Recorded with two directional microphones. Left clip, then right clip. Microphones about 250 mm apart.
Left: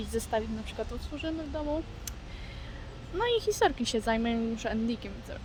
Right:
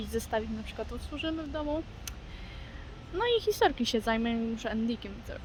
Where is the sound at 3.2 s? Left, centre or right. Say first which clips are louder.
Even; centre.